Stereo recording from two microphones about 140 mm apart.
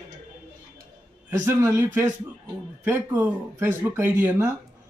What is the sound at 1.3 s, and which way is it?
Speech, 20° right (ahead or behind).